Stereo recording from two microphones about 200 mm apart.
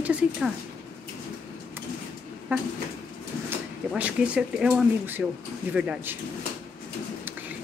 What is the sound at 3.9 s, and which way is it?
Speech, 5° right (ahead or behind).